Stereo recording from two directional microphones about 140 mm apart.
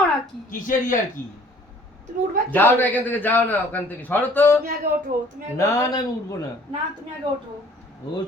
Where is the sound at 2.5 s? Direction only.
10° left (ahead or behind).